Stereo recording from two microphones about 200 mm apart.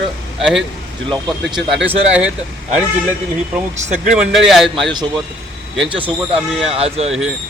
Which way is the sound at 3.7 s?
35° right (ahead or behind).